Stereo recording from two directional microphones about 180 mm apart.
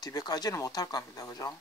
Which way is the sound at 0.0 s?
20° left (ahead or behind).